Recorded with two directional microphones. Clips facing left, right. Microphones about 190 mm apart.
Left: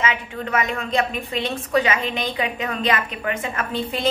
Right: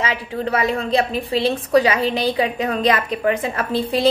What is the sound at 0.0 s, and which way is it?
A woman's voice, 35° right (ahead or behind).